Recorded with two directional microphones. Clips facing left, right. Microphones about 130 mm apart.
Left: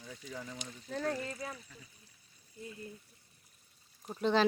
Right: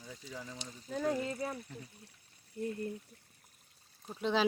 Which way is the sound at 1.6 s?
55° right (ahead or behind).